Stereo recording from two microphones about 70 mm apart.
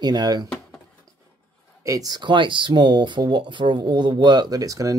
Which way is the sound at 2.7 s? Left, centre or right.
Right.